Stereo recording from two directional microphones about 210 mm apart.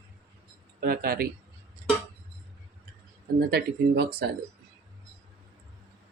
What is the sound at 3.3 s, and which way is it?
Speech, 50° right (ahead or behind).